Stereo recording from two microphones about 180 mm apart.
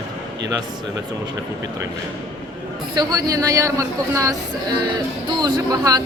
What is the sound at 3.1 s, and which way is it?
Speech, 20° right (ahead or behind).